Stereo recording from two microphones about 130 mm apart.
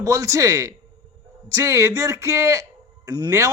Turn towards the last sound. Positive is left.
turn(degrees=-30)  # may be behind; listen again after turning